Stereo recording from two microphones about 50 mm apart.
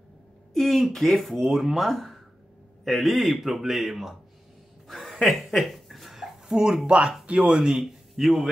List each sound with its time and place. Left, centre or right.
0.5 s speech: centre
4.8 s a sound: centre
6.5 s speech: centre
7.7 s speech: centre